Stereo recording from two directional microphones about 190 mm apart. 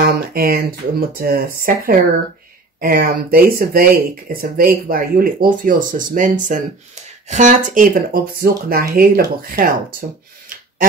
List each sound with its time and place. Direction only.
0.0 s speech: 50° right (ahead or behind)